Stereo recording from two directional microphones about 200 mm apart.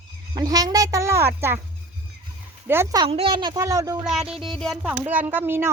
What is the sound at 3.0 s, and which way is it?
Speech, 25° right (ahead or behind).